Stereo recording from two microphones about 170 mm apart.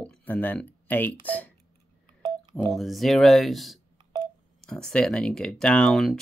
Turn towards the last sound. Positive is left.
turn(degrees=0)  # may be behind; listen again after turning